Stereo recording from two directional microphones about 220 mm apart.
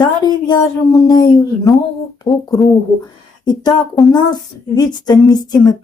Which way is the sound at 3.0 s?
20° left (ahead or behind).